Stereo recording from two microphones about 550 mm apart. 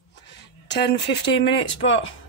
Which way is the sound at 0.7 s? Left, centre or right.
Centre.